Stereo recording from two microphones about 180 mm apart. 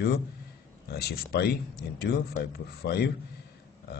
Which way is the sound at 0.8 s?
60° left (ahead or behind).